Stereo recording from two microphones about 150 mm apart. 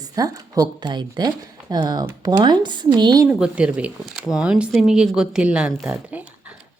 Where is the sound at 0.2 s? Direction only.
25° right (ahead or behind).